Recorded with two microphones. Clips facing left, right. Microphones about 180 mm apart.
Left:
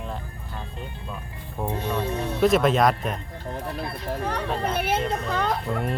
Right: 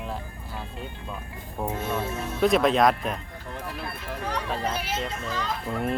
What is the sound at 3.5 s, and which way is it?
Speech, 35° left (ahead or behind).